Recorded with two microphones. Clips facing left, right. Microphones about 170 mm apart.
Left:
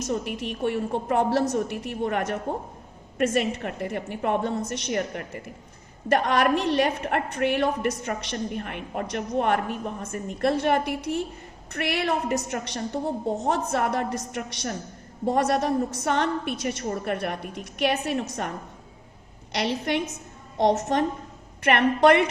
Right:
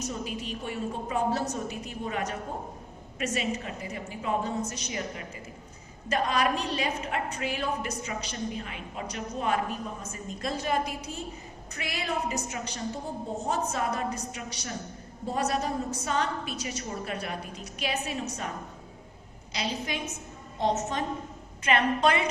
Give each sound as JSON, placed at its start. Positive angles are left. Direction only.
{"t": 0.1, "sound": "a woman's voice", "side_deg": 65}
{"t": 19.5, "sound": "a woman's voice", "side_deg": 70}